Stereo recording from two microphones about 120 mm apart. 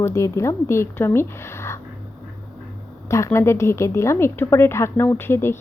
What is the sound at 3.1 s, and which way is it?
Speech, 25° left (ahead or behind).